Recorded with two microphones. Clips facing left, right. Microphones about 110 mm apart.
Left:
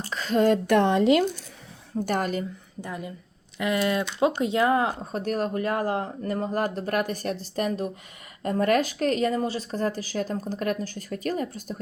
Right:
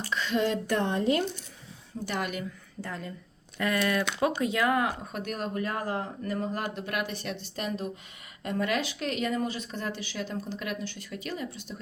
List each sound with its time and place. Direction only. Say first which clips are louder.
0.0 s a woman's voice: left 5 dB; 40° left (ahead or behind); by 1.2 s 90° left
2.0 s a woman's voice: left 6 dB; 40° left (ahead or behind)
2.8 s speech: left 3 dB; 15° left (ahead or behind); by 11.8 s 45° left (ahead or behind)